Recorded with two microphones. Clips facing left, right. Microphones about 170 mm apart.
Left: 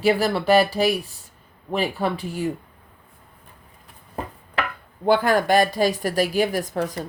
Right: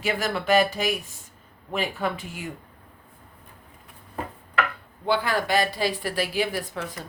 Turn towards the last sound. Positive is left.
turn(degrees=40)  # may be behind; listen again after turning